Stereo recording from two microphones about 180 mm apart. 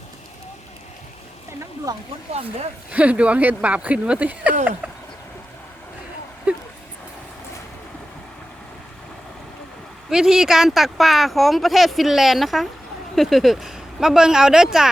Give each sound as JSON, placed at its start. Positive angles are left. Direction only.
{"t": 2.3, "sound": "speech", "side_deg": -35}
{"t": 2.9, "sound": "speech", "side_deg": -5}
{"t": 6.5, "sound": "a sound", "side_deg": -10}
{"t": 10.1, "sound": "speech", "side_deg": -5}